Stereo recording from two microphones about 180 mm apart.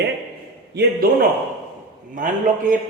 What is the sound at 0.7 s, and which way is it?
Mantra, 65° right (ahead or behind).